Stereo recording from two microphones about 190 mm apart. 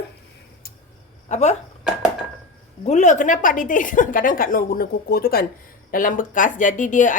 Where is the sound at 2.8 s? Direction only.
40° left (ahead or behind).